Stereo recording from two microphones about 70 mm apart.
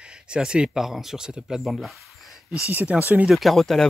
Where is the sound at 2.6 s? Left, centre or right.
Centre.